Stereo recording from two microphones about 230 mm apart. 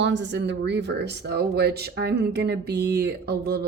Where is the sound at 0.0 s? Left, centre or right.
Right.